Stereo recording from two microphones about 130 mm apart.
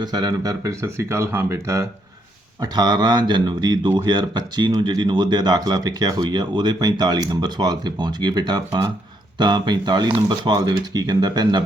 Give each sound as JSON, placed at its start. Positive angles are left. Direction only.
{"t": 0.0, "sound": "speech", "side_deg": -30}